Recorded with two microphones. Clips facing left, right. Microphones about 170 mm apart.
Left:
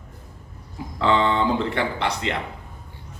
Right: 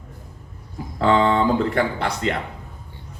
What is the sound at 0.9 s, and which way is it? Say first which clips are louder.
A man's voice: right 3 dB; 45° right (ahead or behind).